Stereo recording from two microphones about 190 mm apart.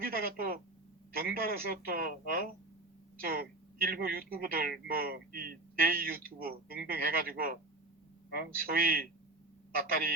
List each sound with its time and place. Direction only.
0.0 s a woman's voice: 50° right (ahead or behind)